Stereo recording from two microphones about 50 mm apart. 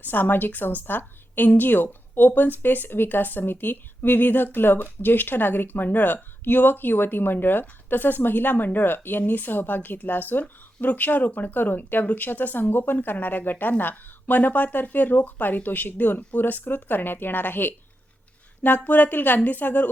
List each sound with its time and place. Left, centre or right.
0.0 s speech: left
18.9 s speech: left